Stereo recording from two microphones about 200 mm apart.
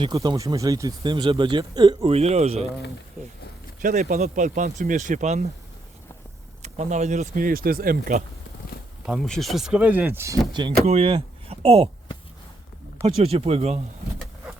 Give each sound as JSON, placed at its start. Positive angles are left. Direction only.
{"t": 0.0, "sound": "speech", "side_deg": -20}
{"t": 3.8, "sound": "speech", "side_deg": -35}
{"t": 6.6, "sound": "speech", "side_deg": -35}
{"t": 9.0, "sound": "speech", "side_deg": 0}
{"t": 10.8, "sound": "speech", "side_deg": -30}
{"t": 13.0, "sound": "speech", "side_deg": -30}